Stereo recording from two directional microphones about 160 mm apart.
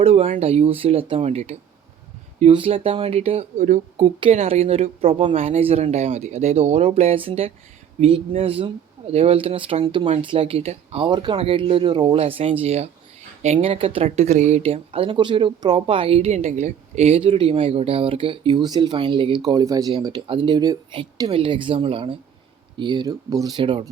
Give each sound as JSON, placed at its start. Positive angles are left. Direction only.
{"t": 0.0, "sound": "speech", "side_deg": -40}